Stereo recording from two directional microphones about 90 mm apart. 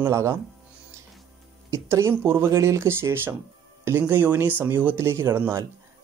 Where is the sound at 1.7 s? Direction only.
30° right (ahead or behind).